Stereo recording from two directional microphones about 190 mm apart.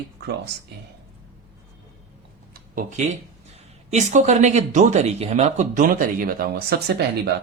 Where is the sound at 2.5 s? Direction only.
45° right (ahead or behind).